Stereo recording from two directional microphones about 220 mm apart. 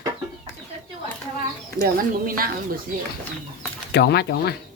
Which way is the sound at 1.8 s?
40° right (ahead or behind).